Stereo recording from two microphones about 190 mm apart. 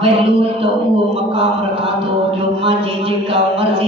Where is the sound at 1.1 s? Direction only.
30° right (ahead or behind).